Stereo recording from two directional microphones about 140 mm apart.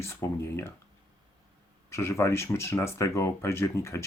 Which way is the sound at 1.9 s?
20° left (ahead or behind).